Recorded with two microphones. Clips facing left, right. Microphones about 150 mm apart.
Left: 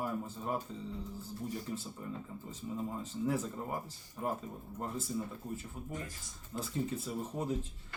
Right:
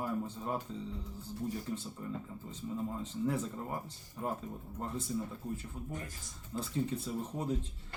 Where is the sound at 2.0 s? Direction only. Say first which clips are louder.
Right 1 dB; 5° left (ahead or behind).